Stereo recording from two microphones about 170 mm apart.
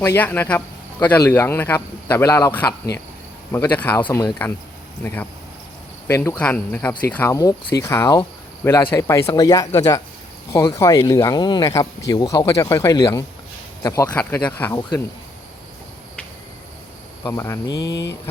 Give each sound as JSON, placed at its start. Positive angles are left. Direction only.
{"t": 0.0, "sound": "a man's voice", "side_deg": 10}
{"t": 14.1, "sound": "a man's voice", "side_deg": 10}
{"t": 17.2, "sound": "a man's voice", "side_deg": 15}